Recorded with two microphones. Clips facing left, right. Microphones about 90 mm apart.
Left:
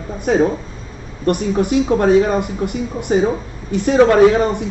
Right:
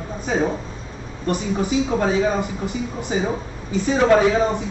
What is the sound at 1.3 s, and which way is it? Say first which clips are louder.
Speech: left 5 dB; 60° left (ahead or behind).